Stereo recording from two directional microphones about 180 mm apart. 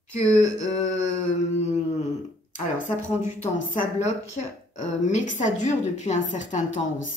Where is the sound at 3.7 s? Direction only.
40° left (ahead or behind).